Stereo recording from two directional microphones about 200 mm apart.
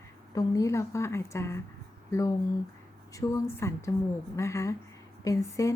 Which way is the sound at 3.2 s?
15° left (ahead or behind).